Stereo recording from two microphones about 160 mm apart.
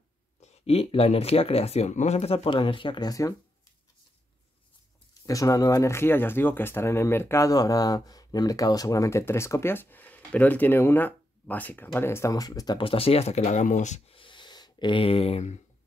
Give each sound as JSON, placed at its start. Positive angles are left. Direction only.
{"t": 0.4, "sound": "speech", "side_deg": 40}
{"t": 5.1, "sound": "speech", "side_deg": 20}